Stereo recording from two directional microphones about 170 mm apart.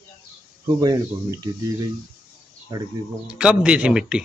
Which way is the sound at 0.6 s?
25° right (ahead or behind).